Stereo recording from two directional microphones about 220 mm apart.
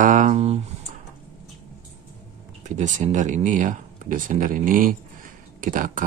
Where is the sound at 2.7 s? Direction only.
35° right (ahead or behind).